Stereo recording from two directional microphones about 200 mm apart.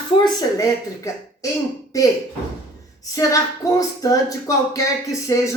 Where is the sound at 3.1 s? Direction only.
15° left (ahead or behind).